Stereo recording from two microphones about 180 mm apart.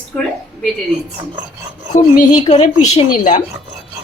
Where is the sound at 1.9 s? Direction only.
40° left (ahead or behind).